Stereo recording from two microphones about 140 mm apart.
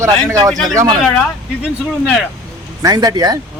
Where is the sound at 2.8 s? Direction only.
25° right (ahead or behind).